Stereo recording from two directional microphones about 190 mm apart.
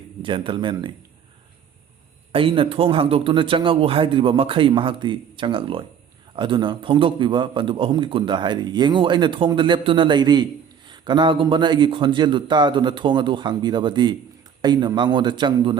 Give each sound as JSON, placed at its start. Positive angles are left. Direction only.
{"t": 0.2, "sound": "a man's voice", "side_deg": -25}
{"t": 2.3, "sound": "a man's voice", "side_deg": -25}